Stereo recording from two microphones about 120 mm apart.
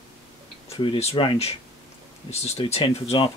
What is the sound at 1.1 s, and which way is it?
Speech, 40° left (ahead or behind).